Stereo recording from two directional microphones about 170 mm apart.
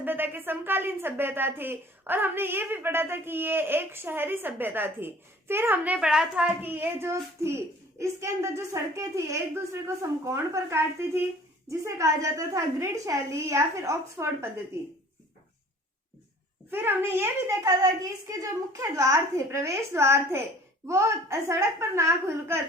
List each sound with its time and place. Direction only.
0.0 s a woman's voice: 10° right (ahead or behind)
16.7 s a woman's voice: 15° right (ahead or behind)